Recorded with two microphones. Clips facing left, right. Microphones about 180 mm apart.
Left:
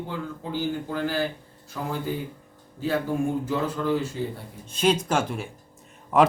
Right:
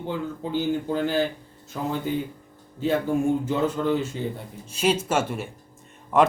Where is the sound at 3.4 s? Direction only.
25° right (ahead or behind).